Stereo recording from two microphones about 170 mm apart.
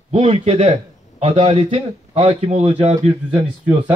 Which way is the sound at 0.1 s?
35° right (ahead or behind).